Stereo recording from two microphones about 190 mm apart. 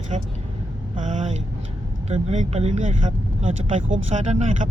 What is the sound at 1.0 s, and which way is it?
Speech, 40° right (ahead or behind).